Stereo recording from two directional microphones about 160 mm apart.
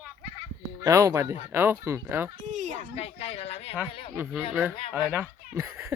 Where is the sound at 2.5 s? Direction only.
50° right (ahead or behind).